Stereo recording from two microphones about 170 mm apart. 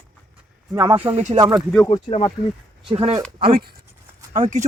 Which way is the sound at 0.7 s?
25° right (ahead or behind).